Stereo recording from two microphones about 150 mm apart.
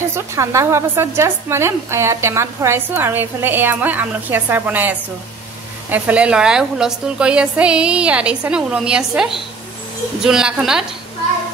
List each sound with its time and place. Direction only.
0.1 s a woman's voice: 20° right (ahead or behind); by 10.9 s 5° right (ahead or behind)